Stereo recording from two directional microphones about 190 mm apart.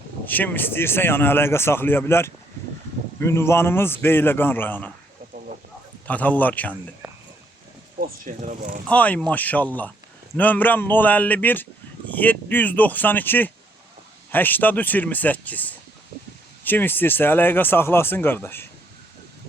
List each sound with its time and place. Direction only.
0.3 s a man's voice: 10° left (ahead or behind)
6.1 s a man's voice: 10° left (ahead or behind)
8.0 s speech: 45° right (ahead or behind)
8.9 s a man's voice: 5° left (ahead or behind)